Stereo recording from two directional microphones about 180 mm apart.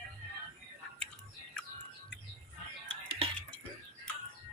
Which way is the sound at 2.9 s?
30° right (ahead or behind).